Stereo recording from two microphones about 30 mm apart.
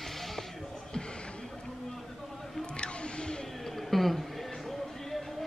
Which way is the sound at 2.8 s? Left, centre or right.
Left.